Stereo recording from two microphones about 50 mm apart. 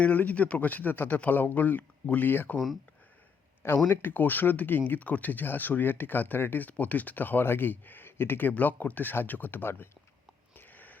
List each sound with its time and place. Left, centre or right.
0.0 s speech: left
3.8 s speech: left
4.1 s speech: left
10.5 s a sound: left